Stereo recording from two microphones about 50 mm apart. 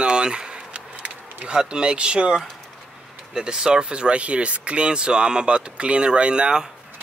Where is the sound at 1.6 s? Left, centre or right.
Centre.